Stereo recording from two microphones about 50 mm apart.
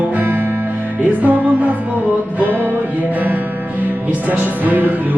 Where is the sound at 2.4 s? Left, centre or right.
Right.